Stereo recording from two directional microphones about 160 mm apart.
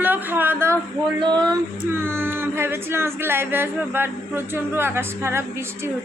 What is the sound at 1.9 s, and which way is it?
Speech, 15° right (ahead or behind).